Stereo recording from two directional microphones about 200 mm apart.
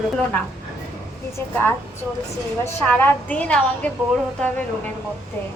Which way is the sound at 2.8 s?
10° left (ahead or behind).